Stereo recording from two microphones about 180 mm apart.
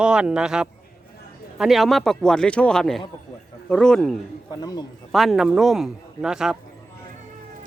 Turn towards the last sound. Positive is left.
turn(degrees=-5)  # may be behind; listen again after turning